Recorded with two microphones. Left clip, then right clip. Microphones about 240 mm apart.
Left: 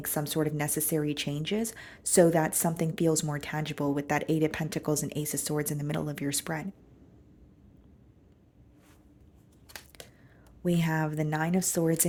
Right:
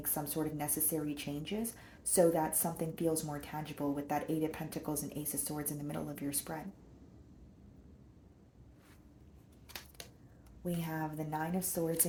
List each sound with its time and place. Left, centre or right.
0.0 s speech: left
10.6 s speech: left